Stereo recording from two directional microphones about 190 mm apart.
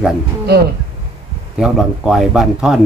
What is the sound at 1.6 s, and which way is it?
Speech, 5° right (ahead or behind).